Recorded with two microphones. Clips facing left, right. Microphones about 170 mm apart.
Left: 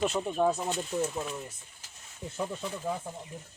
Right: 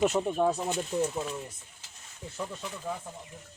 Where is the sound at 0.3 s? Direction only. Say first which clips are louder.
Even; 5° right (ahead or behind).